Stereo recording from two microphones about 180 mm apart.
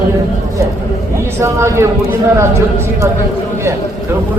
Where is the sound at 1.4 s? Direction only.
15° right (ahead or behind).